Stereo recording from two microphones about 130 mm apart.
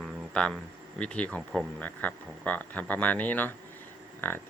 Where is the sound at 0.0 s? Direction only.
5° left (ahead or behind).